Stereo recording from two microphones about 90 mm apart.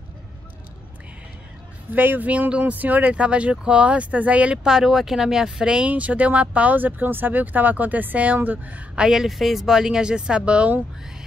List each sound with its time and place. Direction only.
2.0 s speech: 20° right (ahead or behind)